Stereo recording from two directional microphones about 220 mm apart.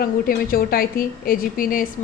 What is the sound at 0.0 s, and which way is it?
A woman's voice, 40° left (ahead or behind).